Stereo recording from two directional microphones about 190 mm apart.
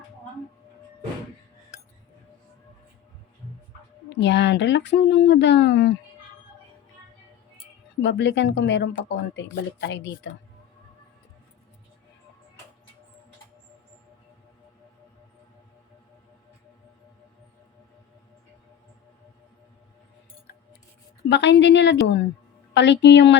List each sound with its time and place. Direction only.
4.1 s speech: 65° left (ahead or behind)
8.0 s speech: 70° left (ahead or behind)
21.2 s speech: 65° left (ahead or behind)